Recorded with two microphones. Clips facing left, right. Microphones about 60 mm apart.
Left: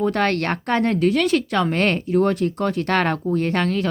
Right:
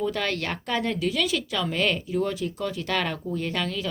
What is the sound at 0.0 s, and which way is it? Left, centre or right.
Speech, left.